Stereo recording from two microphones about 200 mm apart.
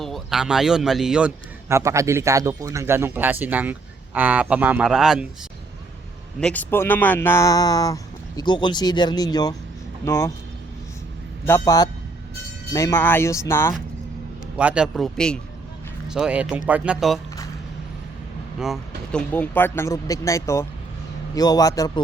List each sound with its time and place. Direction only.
0.0 s speech: centre (ahead or behind)
1.7 s speech: 15° right (ahead or behind)
6.4 s speech: 10° left (ahead or behind)
11.4 s speech: 15° left (ahead or behind)
14.5 s speech: 5° right (ahead or behind)
18.6 s speech: centre (ahead or behind)
19.3 s speech: 10° left (ahead or behind)